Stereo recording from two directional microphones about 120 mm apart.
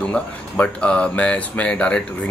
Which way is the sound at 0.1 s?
10° left (ahead or behind).